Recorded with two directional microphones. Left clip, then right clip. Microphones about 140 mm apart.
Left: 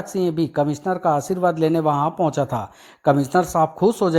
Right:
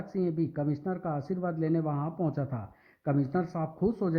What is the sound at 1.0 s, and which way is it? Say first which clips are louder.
Speech: left 17 dB; 30° left (ahead or behind).